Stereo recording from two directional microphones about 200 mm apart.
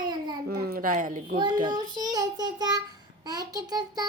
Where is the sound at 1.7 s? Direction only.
20° right (ahead or behind).